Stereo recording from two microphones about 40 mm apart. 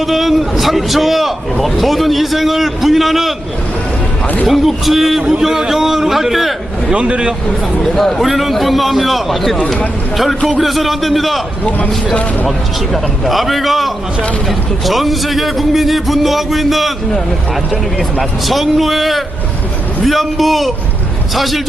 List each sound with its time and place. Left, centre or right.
0.0 s a man's voice: centre
4.4 s a man's voice: centre
6.9 s a man's voice: right
7.8 s a man's voice: centre
10.6 s a man's voice: centre
12.5 s a man's voice: centre
18.2 s a man's voice: centre